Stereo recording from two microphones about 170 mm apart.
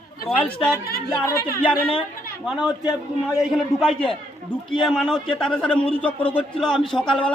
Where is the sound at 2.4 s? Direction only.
Centre (ahead or behind).